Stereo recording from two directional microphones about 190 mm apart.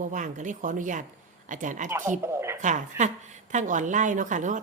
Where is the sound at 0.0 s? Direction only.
40° right (ahead or behind).